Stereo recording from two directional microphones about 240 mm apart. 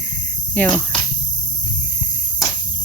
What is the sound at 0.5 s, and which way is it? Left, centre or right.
Speech, centre.